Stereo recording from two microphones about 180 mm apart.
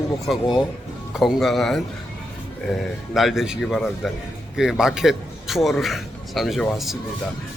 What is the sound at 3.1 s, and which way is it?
A man's voice, centre (ahead or behind).